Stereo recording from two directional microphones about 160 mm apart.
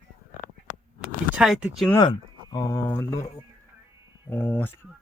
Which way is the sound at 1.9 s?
25° left (ahead or behind).